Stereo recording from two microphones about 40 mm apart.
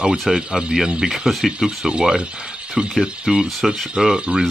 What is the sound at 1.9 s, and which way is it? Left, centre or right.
Speech, right.